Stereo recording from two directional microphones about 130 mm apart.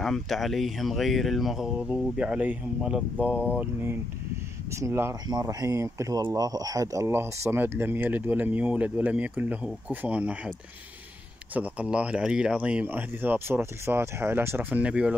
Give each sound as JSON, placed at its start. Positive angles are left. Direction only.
{"t": 0.0, "sound": "speech", "side_deg": 0}
{"t": 4.6, "sound": "speech", "side_deg": -20}
{"t": 11.5, "sound": "speech", "side_deg": -10}